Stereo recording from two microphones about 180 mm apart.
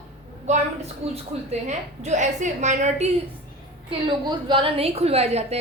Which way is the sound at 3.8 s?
25° right (ahead or behind).